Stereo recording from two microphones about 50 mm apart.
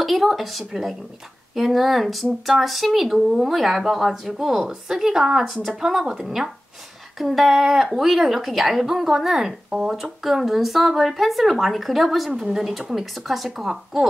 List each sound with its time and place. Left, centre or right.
0.0 s speech: centre
5.4 s speech: centre
5.7 s a woman's voice: centre